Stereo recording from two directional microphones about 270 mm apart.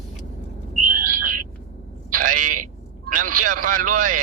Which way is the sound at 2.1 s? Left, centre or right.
Right.